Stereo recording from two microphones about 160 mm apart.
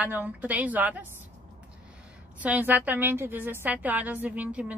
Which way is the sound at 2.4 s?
10° right (ahead or behind).